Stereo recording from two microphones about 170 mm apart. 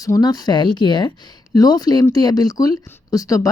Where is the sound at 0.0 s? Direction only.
20° left (ahead or behind).